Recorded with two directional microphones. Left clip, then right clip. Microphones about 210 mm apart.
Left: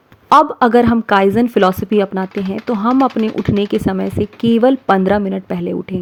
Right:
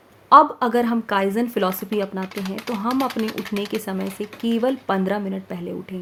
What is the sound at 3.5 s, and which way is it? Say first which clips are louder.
Speech: left 9 dB; 30° left (ahead or behind).